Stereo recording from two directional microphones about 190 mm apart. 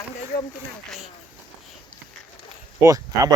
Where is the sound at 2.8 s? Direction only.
20° right (ahead or behind).